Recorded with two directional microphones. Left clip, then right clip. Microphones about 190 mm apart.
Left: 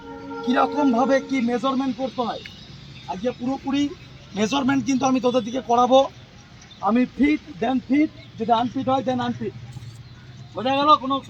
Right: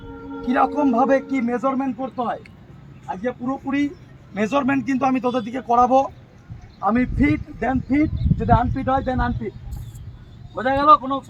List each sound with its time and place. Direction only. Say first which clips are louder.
0.5 s a man's voice: right 1 dB; 5° right (ahead or behind)
3.1 s speech: right 1 dB; 5° right (ahead or behind)
4.4 s a man's voice: right 2 dB; 20° right (ahead or behind)
4.8 s speech: even; centre (ahead or behind)
5.6 s a man's voice: right 1 dB; 15° right (ahead or behind)
10.5 s speech: right 3 dB; 5° left (ahead or behind)